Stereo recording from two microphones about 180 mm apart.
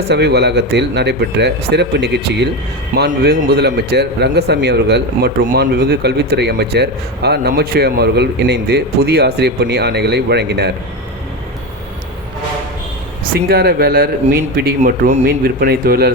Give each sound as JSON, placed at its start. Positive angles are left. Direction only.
{"t": 0.1, "sound": "a man's voice", "side_deg": -65}
{"t": 13.5, "sound": "a man's voice", "side_deg": -60}